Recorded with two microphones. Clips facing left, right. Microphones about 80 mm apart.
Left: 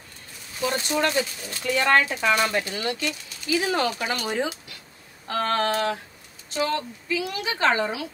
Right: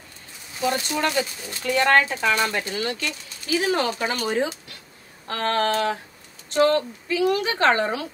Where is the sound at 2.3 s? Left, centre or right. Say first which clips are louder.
Even; left.